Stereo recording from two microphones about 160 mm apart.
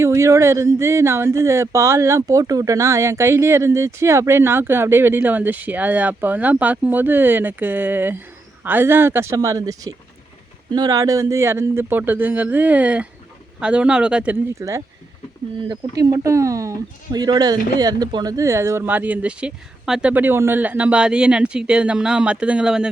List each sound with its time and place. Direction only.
0.0 s speech: 20° right (ahead or behind)
14.6 s speech: 20° right (ahead or behind)